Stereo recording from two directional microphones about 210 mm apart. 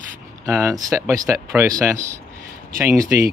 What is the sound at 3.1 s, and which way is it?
Speech, 10° right (ahead or behind).